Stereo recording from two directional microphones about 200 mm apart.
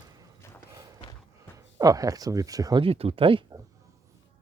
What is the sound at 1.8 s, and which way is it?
Speech, 15° right (ahead or behind).